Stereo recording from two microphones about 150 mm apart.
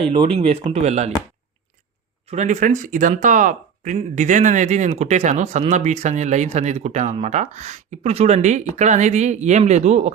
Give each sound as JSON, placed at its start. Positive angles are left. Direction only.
{"t": 0.0, "sound": "speech", "side_deg": -35}
{"t": 2.2, "sound": "speech", "side_deg": -50}